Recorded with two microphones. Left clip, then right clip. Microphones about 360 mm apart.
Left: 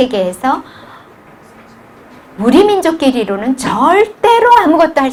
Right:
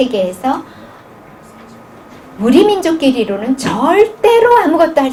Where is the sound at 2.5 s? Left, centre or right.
Left.